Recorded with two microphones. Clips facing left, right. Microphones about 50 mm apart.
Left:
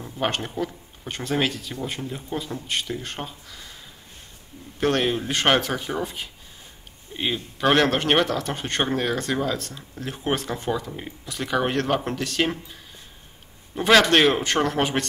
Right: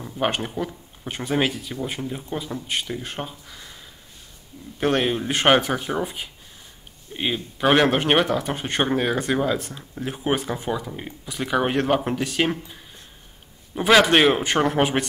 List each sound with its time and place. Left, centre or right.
0.0 s speech: centre
4.7 s speech: centre